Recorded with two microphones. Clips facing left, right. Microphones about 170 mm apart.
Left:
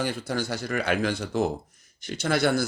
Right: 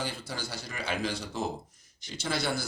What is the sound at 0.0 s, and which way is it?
Speech, 55° left (ahead or behind).